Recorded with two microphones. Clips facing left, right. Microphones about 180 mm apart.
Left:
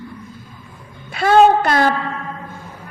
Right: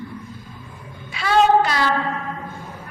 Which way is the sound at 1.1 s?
50° left (ahead or behind).